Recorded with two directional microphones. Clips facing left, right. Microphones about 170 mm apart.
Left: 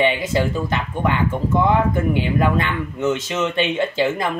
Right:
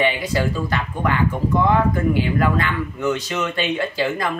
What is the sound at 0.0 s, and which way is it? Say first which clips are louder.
Speech: left 2 dB; 20° left (ahead or behind).